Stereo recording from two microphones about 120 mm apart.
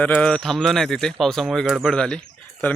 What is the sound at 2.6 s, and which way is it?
Speech, 15° left (ahead or behind).